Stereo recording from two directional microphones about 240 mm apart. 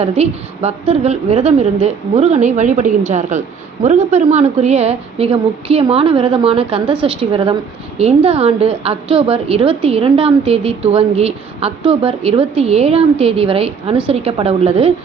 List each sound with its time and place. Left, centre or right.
0.0 s a woman's voice: right